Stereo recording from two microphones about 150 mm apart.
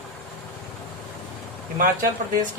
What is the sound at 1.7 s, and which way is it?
Speech, 65° right (ahead or behind).